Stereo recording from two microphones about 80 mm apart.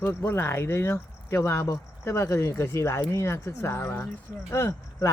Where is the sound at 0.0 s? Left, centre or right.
Left.